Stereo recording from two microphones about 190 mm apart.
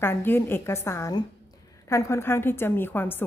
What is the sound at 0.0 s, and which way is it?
A woman's voice, 10° left (ahead or behind).